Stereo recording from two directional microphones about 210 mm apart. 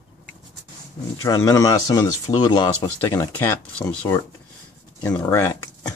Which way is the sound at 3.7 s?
5° left (ahead or behind).